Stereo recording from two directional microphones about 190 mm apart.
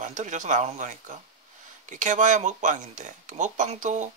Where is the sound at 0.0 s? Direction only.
40° right (ahead or behind).